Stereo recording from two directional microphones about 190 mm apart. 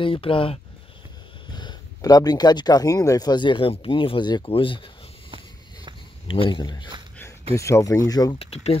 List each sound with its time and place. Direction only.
0.0 s speech: 30° left (ahead or behind)
6.5 s speech: 20° left (ahead or behind)
8.4 s speech: 30° left (ahead or behind)